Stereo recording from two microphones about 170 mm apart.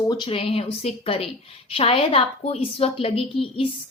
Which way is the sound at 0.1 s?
30° left (ahead or behind).